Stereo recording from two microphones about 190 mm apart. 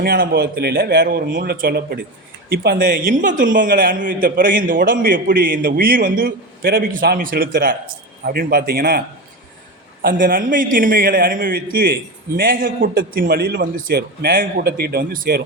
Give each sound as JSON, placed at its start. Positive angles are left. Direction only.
{"t": 0.0, "sound": "a man's voice", "side_deg": -60}